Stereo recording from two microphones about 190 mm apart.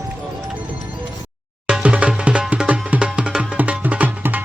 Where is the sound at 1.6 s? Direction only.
5° right (ahead or behind).